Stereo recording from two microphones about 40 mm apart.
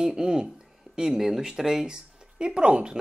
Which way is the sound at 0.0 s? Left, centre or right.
Centre.